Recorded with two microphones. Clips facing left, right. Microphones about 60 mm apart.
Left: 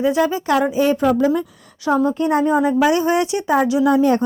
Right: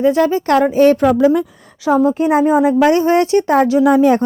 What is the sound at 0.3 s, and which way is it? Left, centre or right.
Speech, right.